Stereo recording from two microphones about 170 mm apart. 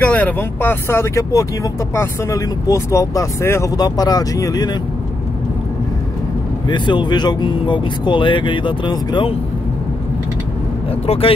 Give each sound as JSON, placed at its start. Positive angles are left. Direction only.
{"t": 0.0, "sound": "speech", "side_deg": 10}
{"t": 6.7, "sound": "speech", "side_deg": 25}
{"t": 11.1, "sound": "speech", "side_deg": 35}